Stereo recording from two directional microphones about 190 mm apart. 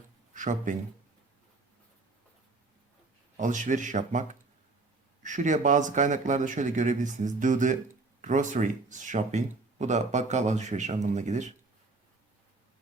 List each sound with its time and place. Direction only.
0.3 s a man's voice: 40° right (ahead or behind)
3.3 s speech: 40° right (ahead or behind)